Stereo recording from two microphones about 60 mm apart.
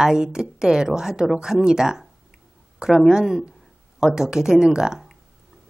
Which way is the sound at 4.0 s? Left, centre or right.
Centre.